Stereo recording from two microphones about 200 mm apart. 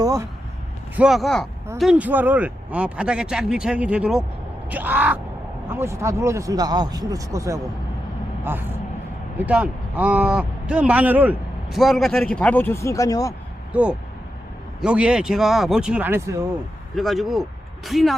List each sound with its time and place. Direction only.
0.9 s a man's voice: centre (ahead or behind); by 13.3 s 15° left (ahead or behind)
14.8 s a man's voice: 5° right (ahead or behind)
16.9 s a man's voice: centre (ahead or behind)